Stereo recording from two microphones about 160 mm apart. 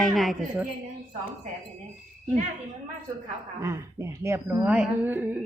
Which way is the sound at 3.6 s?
20° right (ahead or behind).